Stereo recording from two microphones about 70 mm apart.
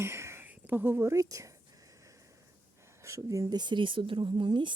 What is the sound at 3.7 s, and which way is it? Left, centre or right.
Speech, right.